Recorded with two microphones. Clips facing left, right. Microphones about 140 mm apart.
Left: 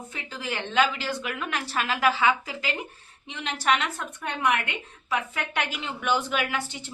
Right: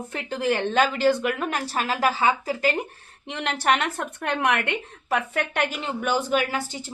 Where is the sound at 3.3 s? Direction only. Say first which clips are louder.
Right 3 dB; 60° right (ahead or behind).